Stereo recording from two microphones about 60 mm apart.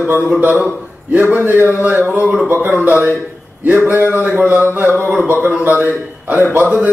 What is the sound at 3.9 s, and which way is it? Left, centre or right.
Speech, right.